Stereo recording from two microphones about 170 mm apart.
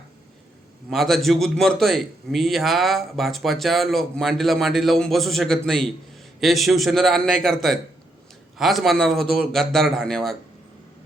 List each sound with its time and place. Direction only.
0.9 s a man's voice: centre (ahead or behind)